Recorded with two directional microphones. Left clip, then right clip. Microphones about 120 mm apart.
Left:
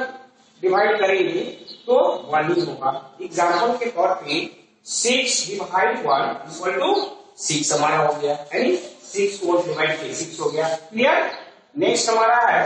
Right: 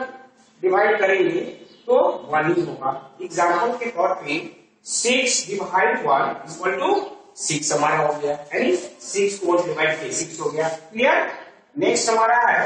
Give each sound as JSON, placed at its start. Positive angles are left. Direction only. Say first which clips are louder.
{"t": 0.6, "sound": "a man's voice", "louder": "even", "side_deg": 20}